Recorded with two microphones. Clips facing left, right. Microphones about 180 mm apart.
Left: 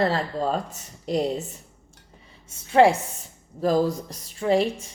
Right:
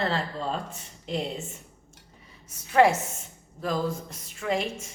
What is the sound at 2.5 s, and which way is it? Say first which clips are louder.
A woman's voice: left 3 dB; 30° left (ahead or behind).